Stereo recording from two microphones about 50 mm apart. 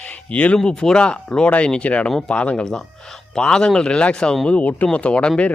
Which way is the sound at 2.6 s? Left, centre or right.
Centre.